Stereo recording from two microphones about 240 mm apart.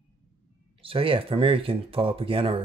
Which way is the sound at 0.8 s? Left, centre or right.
Right.